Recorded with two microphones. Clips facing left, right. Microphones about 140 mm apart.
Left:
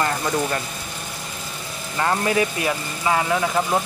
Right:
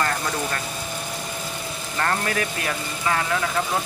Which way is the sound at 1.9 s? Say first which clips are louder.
Left 4 dB; 10° left (ahead or behind).